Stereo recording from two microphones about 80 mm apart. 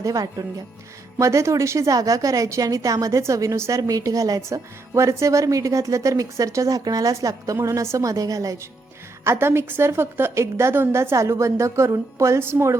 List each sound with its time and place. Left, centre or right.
0.0 s a woman's voice: right
9.2 s a woman's voice: right